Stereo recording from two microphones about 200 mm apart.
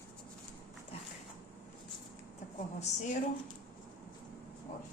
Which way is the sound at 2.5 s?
35° left (ahead or behind).